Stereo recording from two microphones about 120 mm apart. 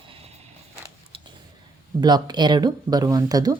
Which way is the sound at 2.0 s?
35° right (ahead or behind).